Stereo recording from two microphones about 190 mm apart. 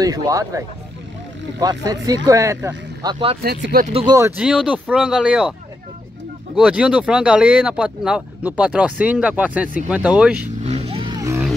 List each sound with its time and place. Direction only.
0.0 s speech: 20° right (ahead or behind)
3.4 s speech: 55° right (ahead or behind)
4.4 s speech: 5° right (ahead or behind)
6.5 s speech: 5° right (ahead or behind)
10.6 s vehicle: 35° right (ahead or behind); by 11.4 s 15° right (ahead or behind)